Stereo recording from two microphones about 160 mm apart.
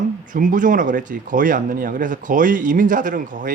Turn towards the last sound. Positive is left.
turn(degrees=-55)  # may be behind; listen again after turning